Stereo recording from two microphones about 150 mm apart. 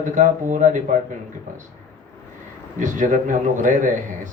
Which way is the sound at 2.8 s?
55° right (ahead or behind).